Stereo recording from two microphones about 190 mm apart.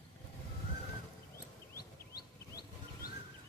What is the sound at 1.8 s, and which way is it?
Chirp, 55° left (ahead or behind).